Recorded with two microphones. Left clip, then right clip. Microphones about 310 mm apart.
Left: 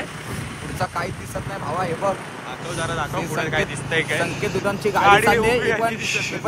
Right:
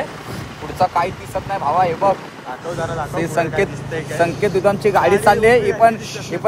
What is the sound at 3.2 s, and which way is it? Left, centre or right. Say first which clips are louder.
Speech: right 8 dB; right.